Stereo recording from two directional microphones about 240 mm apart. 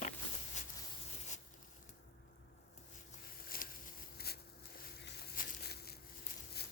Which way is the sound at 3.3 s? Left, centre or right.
Left.